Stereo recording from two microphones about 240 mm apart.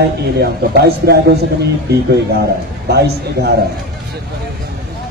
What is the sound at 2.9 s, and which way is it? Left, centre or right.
Speech, right.